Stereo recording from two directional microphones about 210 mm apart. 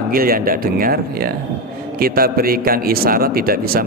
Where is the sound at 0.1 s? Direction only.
45° right (ahead or behind).